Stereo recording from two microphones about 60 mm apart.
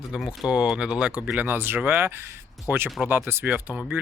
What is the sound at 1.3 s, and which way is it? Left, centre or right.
Speech, right.